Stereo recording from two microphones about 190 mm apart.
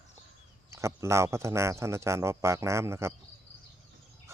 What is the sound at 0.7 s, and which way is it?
Speech, 15° right (ahead or behind).